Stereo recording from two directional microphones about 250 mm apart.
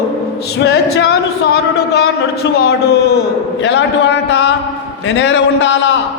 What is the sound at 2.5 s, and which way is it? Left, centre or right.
A man's voice, left.